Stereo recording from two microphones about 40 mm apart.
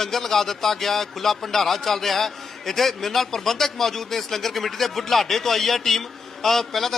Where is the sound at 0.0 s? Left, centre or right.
Centre.